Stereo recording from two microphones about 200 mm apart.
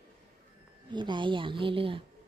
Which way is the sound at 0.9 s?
25° right (ahead or behind).